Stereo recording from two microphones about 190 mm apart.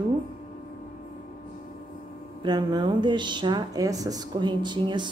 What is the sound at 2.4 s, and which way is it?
Speech, 20° right (ahead or behind).